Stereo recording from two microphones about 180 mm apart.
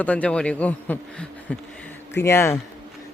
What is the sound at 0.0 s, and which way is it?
Speech, 5° left (ahead or behind).